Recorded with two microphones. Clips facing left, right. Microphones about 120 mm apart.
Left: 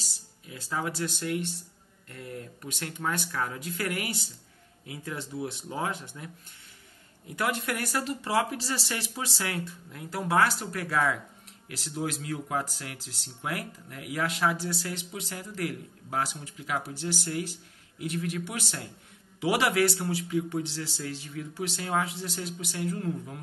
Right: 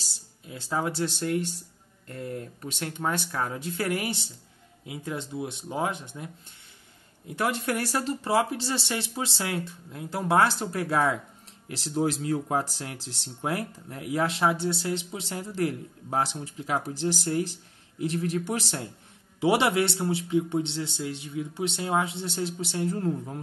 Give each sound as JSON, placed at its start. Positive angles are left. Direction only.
{"t": 0.0, "sound": "a man's voice", "side_deg": -30}
{"t": 7.3, "sound": "a man's voice", "side_deg": -30}